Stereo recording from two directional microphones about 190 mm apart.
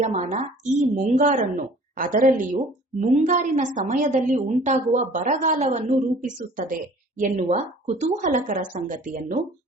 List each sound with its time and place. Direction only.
0.0 s a woman's voice: 40° right (ahead or behind)